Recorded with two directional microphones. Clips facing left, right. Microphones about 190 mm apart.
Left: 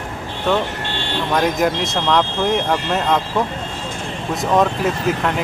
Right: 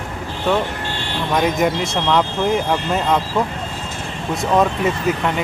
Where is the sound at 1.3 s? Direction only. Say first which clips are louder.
Even; centre (ahead or behind).